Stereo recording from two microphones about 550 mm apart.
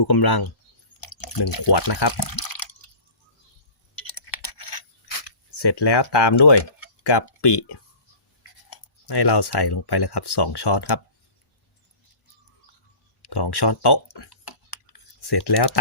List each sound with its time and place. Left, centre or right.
0.0 s speech: left
4.1 s a sound: left
7.0 s speech: left
13.2 s typing: left